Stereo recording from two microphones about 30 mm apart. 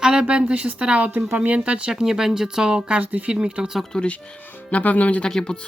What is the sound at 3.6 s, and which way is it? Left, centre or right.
Speech, right.